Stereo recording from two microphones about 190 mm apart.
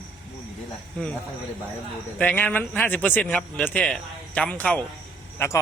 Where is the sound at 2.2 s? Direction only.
10° left (ahead or behind).